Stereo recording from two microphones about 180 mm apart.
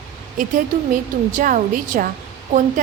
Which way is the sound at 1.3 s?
45° right (ahead or behind).